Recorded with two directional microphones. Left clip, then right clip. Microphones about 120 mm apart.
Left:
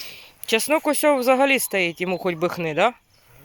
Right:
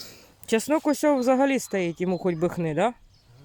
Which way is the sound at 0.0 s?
55° right (ahead or behind).